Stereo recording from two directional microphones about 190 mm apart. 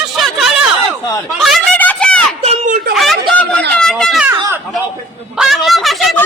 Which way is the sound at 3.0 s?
Centre (ahead or behind).